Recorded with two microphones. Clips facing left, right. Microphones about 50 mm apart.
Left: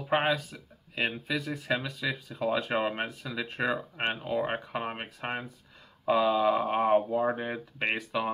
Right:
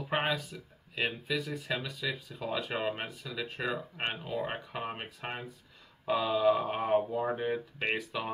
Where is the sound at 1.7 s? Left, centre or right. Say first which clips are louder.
Left 5 dB; left.